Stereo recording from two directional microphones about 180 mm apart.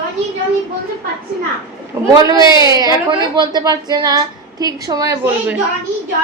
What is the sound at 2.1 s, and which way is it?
A woman's voice, 20° right (ahead or behind).